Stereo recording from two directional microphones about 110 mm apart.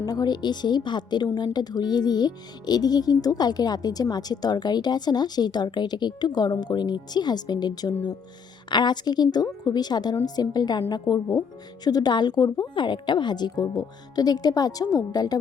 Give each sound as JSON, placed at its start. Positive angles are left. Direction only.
{"t": 0.0, "sound": "speech", "side_deg": 35}